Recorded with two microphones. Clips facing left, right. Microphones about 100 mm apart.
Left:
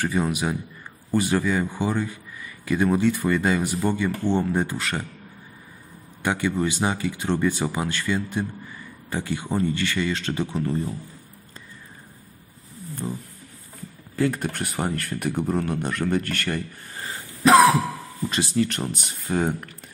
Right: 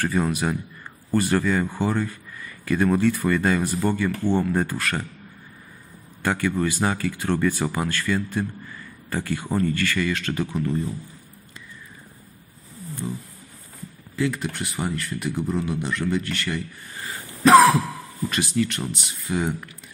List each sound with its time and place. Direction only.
0.0 s speech: 15° left (ahead or behind)
6.2 s speech: 15° left (ahead or behind); by 11.0 s 35° left (ahead or behind)
13.0 s speech: 25° left (ahead or behind)
14.1 s speech: 45° left (ahead or behind)
18.3 s speech: 30° left (ahead or behind)